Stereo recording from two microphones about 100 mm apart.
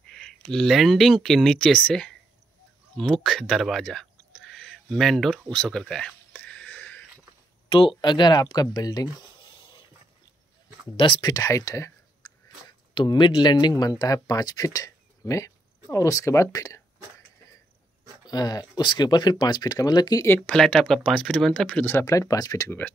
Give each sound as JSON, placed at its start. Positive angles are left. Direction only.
{"t": 0.1, "sound": "speech", "side_deg": 5}
{"t": 5.5, "sound": "a sound", "side_deg": 10}
{"t": 7.7, "sound": "speech", "side_deg": 55}
{"t": 9.4, "sound": "a sound", "side_deg": 55}
{"t": 11.0, "sound": "speech", "side_deg": 50}
{"t": 12.2, "sound": "speech", "side_deg": 50}
{"t": 18.2, "sound": "speech", "side_deg": 40}
{"t": 20.3, "sound": "speech", "side_deg": 5}
{"t": 21.8, "sound": "speech", "side_deg": 30}